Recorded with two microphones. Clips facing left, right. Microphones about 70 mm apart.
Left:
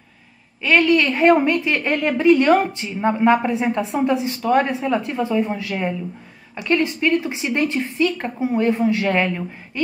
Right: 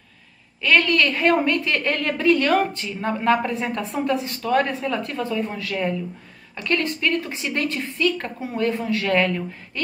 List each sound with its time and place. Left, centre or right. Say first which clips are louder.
0.6 s a woman's voice: left 3 dB; centre